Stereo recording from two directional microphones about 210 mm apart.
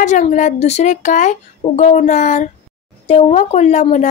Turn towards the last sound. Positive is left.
turn(degrees=35)  # may be behind; listen again after turning